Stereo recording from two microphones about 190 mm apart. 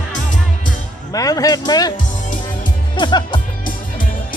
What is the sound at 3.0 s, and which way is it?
Music, 25° left (ahead or behind).